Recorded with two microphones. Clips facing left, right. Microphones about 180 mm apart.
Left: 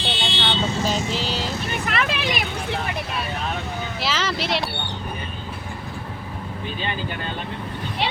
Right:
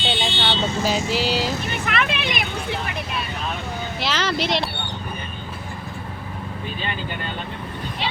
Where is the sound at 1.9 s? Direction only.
35° left (ahead or behind).